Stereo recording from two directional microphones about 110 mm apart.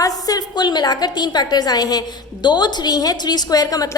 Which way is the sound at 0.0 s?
35° left (ahead or behind).